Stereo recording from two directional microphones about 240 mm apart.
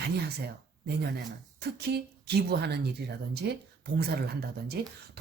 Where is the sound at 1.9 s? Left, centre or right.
Right.